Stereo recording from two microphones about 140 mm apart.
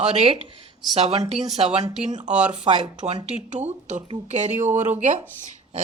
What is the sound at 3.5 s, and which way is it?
Speech, 55° right (ahead or behind).